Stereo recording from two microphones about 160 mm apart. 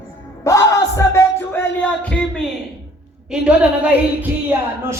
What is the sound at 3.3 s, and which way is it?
A woman's voice, 5° right (ahead or behind).